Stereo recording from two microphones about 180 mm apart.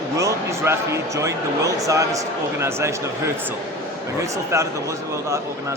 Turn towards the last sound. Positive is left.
turn(degrees=-15)  # may be behind; listen again after turning